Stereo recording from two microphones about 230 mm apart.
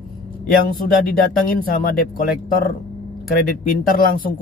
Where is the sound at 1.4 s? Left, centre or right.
Left.